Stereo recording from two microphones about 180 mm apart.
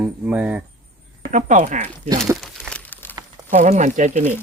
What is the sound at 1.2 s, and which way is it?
Speech, 45° right (ahead or behind).